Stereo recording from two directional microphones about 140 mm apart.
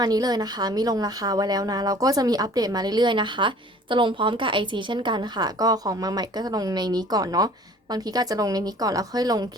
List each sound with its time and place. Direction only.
0.0 s speech: 30° right (ahead or behind)